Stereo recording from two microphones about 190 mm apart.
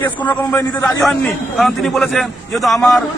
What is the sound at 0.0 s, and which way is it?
Speech, 10° left (ahead or behind).